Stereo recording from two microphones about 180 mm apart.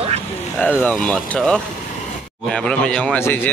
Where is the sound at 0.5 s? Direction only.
10° left (ahead or behind).